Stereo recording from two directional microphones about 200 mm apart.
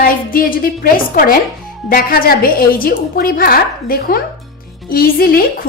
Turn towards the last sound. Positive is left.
turn(degrees=50)  # may be behind; listen again after turning